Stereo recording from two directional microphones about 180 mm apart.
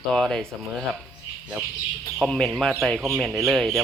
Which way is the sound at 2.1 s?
Centre (ahead or behind).